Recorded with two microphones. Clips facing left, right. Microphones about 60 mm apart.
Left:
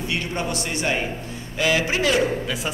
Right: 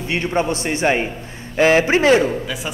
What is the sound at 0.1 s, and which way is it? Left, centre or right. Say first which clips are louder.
A man's voice: right 8 dB; right.